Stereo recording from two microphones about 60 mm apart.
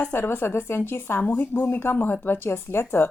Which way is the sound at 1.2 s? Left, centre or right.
Left.